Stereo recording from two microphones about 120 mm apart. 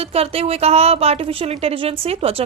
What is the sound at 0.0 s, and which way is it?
A woman's voice, 55° right (ahead or behind).